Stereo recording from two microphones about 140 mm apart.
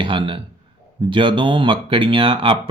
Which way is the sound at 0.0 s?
35° right (ahead or behind).